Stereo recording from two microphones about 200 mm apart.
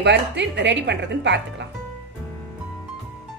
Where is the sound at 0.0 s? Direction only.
60° right (ahead or behind).